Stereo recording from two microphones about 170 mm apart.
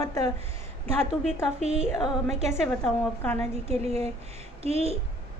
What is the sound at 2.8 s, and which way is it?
Speech, 10° left (ahead or behind).